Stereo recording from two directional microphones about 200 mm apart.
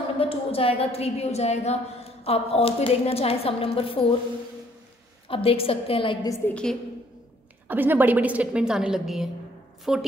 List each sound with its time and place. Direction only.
0.2 s a woman's voice: 30° left (ahead or behind)
5.3 s a woman's voice: 30° left (ahead or behind); by 6.8 s 5° left (ahead or behind)
7.6 s a woman's voice: 10° right (ahead or behind)